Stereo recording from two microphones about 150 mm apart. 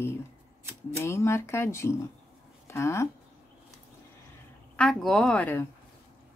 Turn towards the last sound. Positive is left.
turn(degrees=10)  # may be behind; listen again after turning